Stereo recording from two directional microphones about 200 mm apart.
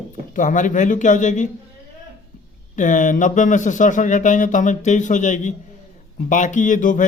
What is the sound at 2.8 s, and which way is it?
Speech, 40° left (ahead or behind).